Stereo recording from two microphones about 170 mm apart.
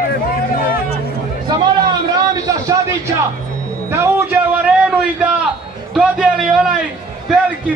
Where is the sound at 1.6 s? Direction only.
20° right (ahead or behind).